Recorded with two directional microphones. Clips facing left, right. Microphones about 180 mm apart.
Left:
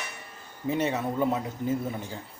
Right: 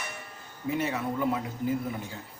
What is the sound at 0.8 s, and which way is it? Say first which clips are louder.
Speech: left 3 dB; 25° left (ahead or behind).